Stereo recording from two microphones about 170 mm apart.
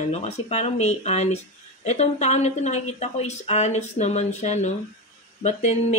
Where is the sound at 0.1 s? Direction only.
40° left (ahead or behind).